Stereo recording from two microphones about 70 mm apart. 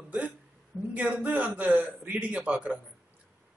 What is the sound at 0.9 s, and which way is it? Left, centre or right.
A man's voice, centre.